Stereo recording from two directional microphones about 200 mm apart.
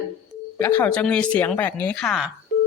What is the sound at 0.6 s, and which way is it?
Speech, 10° left (ahead or behind).